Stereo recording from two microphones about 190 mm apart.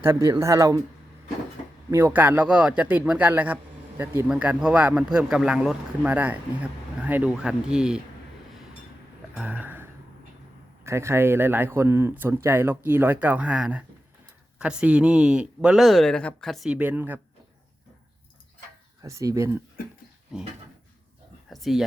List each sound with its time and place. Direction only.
0.0 s speech: 15° right (ahead or behind)
1.9 s speech: 15° right (ahead or behind)
9.3 s a sound: 5° right (ahead or behind)
10.8 s speech: 15° right (ahead or behind)
19.0 s speech: 15° right (ahead or behind)
20.3 s speech: 5° right (ahead or behind)
21.5 s speech: centre (ahead or behind)